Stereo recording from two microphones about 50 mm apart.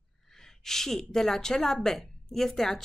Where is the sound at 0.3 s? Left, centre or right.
Centre.